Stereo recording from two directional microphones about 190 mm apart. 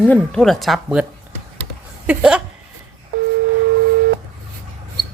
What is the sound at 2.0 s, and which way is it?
Speech, 5° right (ahead or behind).